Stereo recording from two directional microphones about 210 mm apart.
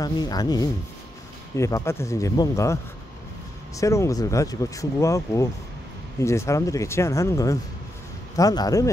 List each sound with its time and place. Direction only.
0.0 s speech: 20° left (ahead or behind)